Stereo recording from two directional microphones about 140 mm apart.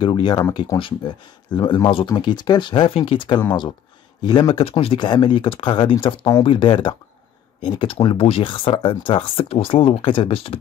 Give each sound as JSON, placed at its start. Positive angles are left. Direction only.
{"t": 0.0, "sound": "speech", "side_deg": 30}